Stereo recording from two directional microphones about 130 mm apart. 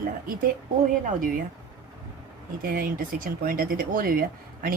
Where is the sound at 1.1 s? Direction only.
90° right.